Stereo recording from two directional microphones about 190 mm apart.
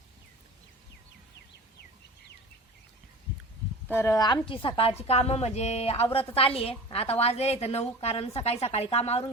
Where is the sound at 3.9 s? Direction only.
15° left (ahead or behind).